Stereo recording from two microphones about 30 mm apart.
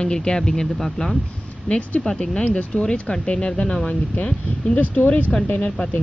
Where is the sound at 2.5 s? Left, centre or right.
Left.